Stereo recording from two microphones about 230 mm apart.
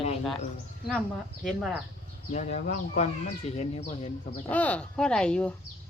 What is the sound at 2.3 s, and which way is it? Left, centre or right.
Speech, left.